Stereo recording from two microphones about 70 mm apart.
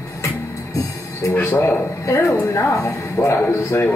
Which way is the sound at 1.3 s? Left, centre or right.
Left.